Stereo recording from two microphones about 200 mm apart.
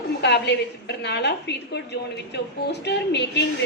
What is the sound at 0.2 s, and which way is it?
A woman's voice, 60° left (ahead or behind).